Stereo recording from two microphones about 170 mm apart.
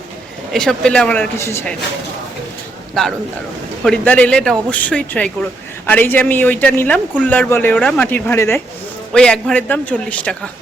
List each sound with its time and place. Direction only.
0.5 s speech: 5° left (ahead or behind)
2.9 s speech: centre (ahead or behind)